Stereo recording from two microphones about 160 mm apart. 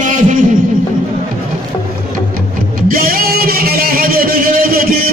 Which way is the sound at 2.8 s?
65° right (ahead or behind).